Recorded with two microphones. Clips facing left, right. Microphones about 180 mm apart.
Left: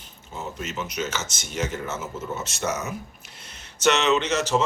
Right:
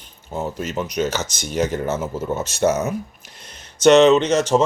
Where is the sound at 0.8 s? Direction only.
35° right (ahead or behind).